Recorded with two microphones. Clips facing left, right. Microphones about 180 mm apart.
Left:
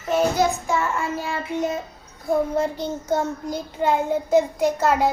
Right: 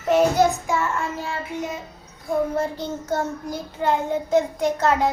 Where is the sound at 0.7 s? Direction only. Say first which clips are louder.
Left 1 dB; centre (ahead or behind).